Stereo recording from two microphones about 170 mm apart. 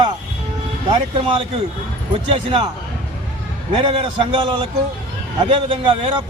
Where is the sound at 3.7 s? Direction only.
30° right (ahead or behind).